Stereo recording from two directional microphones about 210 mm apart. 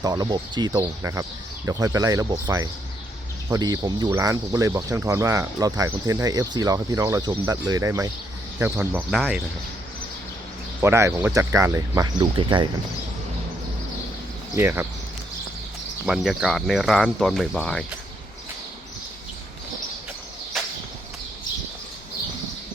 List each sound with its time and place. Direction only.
0.0 s speech: 20° right (ahead or behind); by 9.4 s centre (ahead or behind)
10.8 s speech: 10° right (ahead or behind)
14.5 s speech: 10° right (ahead or behind)
16.0 s speech: centre (ahead or behind)
20.5 s a sound: centre (ahead or behind)